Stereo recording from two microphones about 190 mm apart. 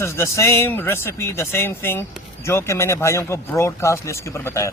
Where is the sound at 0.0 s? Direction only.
15° left (ahead or behind).